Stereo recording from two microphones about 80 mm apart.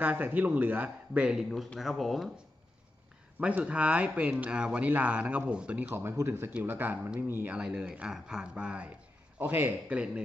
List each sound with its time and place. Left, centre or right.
0.0 s a man's voice: right
1.2 s speech: centre
3.3 s speech: centre
5.9 s a man's voice: right
7.4 s speech: centre
9.4 s a man's voice: right